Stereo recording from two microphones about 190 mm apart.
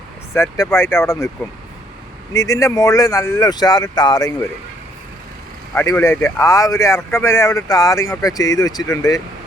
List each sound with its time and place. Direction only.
0.3 s speech: 15° left (ahead or behind)
2.3 s speech: 15° left (ahead or behind)
5.7 s speech: 15° left (ahead or behind)